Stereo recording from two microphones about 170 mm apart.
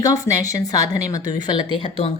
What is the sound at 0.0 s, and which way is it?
A woman's voice, 20° left (ahead or behind).